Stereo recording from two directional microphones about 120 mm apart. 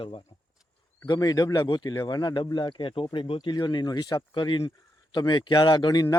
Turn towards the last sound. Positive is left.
turn(degrees=35)  # may be behind; listen again after turning